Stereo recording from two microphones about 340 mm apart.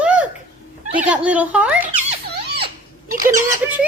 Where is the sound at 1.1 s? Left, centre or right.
Centre.